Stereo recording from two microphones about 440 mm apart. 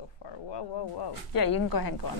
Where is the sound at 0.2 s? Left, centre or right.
Left.